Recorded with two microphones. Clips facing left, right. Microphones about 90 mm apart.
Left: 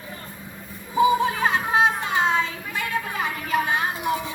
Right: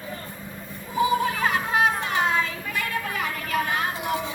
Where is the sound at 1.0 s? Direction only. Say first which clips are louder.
Left 3 dB; 20° left (ahead or behind).